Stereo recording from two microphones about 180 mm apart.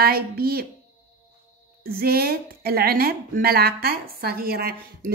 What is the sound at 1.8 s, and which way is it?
A woman's voice, 60° right (ahead or behind).